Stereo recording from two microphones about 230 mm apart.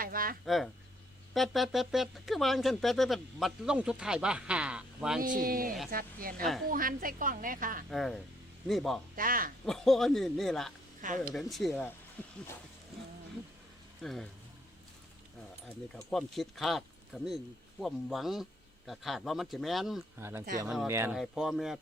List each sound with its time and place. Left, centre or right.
0.0 s a sound: right
0.4 s speech: centre
5.2 s a woman's voice: right
7.9 s speech: centre
9.1 s a woman's voice: right
9.6 s speech: centre
11.0 s a woman's voice: right
11.3 s speech: centre
12.2 s music: centre
14.0 s speech: centre
16.0 s speech: centre